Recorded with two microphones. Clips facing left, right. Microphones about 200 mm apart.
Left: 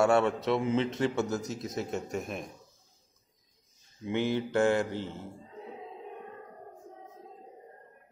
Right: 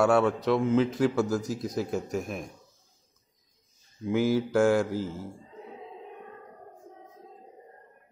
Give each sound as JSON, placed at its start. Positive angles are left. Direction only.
{"t": 0.0, "sound": "a man's voice", "side_deg": 0}
{"t": 4.0, "sound": "a man's voice", "side_deg": -5}